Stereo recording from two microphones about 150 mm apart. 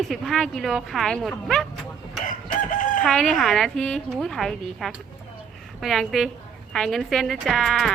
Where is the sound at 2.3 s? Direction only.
60° left (ahead or behind).